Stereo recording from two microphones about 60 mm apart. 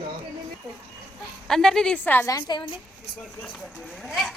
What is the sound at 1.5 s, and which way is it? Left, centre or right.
Speech, centre.